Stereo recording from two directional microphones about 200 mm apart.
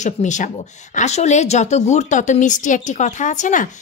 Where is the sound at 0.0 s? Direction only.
35° left (ahead or behind).